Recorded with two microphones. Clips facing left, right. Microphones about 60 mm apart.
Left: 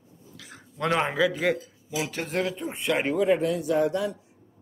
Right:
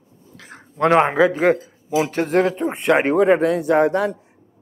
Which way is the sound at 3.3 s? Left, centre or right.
Right.